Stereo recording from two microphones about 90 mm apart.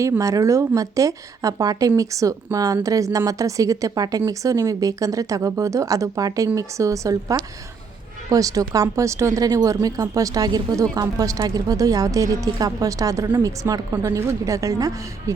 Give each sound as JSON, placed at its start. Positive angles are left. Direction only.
{"t": 0.0, "sound": "speech", "side_deg": -40}